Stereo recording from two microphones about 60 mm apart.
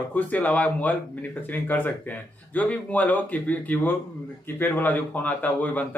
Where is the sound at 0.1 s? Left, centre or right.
Left.